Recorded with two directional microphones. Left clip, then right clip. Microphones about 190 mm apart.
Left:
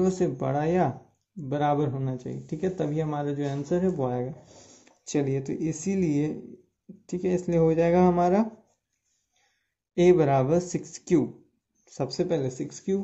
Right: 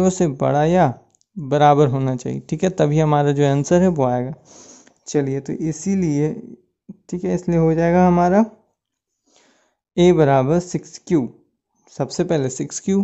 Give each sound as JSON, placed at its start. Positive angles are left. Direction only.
{"t": 0.0, "sound": "speech", "side_deg": -45}
{"t": 1.5, "sound": "speech", "side_deg": -55}
{"t": 9.9, "sound": "speech", "side_deg": -40}